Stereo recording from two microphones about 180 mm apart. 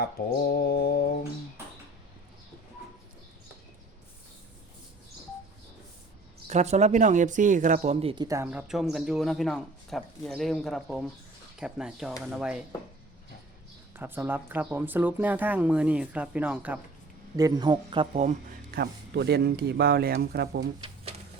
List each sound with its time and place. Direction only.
0.0 s mantra: 55° left (ahead or behind)
6.5 s speech: 40° right (ahead or behind); by 12.6 s 5° right (ahead or behind)
13.9 s speech: 10° right (ahead or behind)
17.3 s speech: 20° right (ahead or behind)
18.1 s speech: 40° right (ahead or behind)
18.7 s speech: 65° right (ahead or behind)
20.8 s a sound: 35° right (ahead or behind)